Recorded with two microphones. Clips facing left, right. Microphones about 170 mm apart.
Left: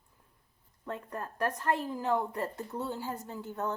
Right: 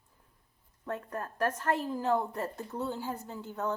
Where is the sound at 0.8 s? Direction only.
Centre (ahead or behind).